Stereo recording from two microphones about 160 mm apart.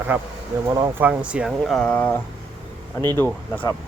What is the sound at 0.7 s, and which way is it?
Speech, 20° right (ahead or behind).